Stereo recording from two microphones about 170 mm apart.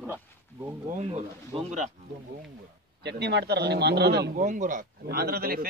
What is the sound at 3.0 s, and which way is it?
A man's voice, 80° right.